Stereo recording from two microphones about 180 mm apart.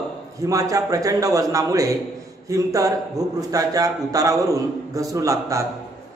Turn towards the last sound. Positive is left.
turn(degrees=-15)  # may be behind; listen again after turning